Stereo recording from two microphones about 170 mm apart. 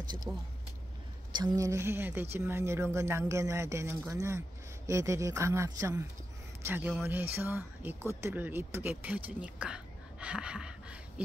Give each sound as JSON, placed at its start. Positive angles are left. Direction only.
{"t": 0.3, "sound": "a woman's voice", "side_deg": -15}